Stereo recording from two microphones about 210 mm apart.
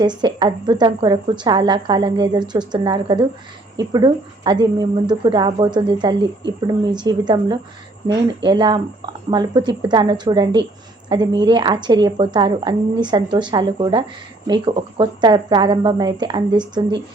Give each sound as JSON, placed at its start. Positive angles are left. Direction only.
{"t": 0.0, "sound": "speech", "side_deg": -20}